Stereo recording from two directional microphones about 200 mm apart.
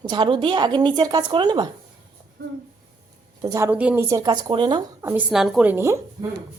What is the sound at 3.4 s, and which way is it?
Speech, 15° right (ahead or behind).